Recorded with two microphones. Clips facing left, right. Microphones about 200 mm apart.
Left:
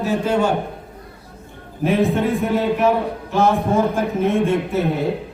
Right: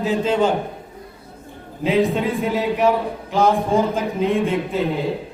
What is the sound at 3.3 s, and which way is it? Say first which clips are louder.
Speech: even; 15° right (ahead or behind).